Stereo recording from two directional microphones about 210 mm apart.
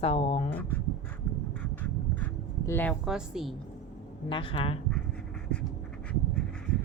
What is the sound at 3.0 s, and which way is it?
Speech, centre (ahead or behind).